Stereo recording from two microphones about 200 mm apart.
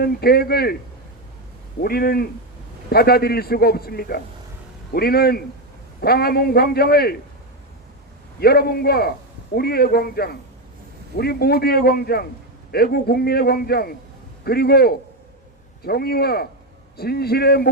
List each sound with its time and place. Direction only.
0.0 s a man's voice: 50° left (ahead or behind)
1.8 s a man's voice: 50° left (ahead or behind)
8.4 s a man's voice: 50° left (ahead or behind)